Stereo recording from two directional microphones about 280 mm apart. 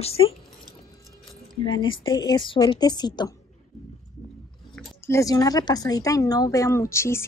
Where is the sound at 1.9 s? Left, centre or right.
Centre.